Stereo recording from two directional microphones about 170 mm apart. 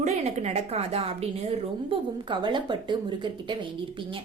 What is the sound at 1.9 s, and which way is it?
A woman's voice, 25° right (ahead or behind).